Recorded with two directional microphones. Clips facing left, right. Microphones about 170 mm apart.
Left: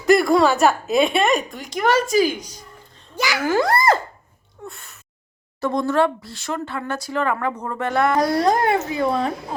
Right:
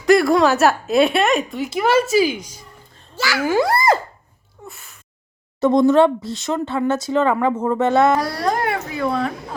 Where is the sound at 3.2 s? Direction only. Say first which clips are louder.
Right 1 dB; 20° left (ahead or behind).